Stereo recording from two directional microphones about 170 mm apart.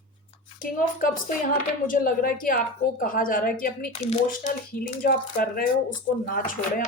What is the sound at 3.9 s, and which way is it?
Speech, 40° left (ahead or behind).